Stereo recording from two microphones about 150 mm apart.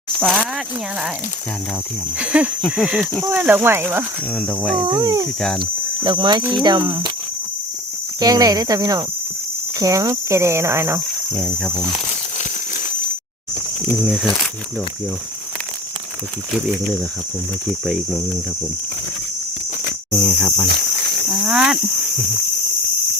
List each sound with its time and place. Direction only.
0.2 s speech: centre (ahead or behind)
2.1 s speech: 10° right (ahead or behind)
4.4 s speech: 5° left (ahead or behind)
4.9 s speech: 25° right (ahead or behind)
8.2 s speech: 25° right (ahead or behind)
11.3 s speech: 5° left (ahead or behind)
17.7 s speech: centre (ahead or behind)
20.2 s speech: centre (ahead or behind)